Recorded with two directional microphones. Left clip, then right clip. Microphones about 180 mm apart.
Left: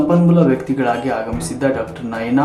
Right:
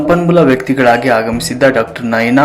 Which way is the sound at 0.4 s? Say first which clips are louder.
Right 7 dB; 15° right (ahead or behind).